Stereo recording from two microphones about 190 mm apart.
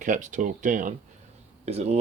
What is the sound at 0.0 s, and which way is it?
Speech, 40° right (ahead or behind).